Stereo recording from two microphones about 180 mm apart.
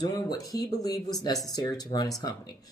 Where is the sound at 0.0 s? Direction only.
20° left (ahead or behind).